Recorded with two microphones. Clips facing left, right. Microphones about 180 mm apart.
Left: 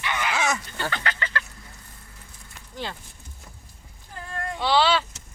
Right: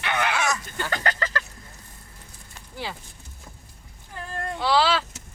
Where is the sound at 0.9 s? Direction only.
40° right (ahead or behind).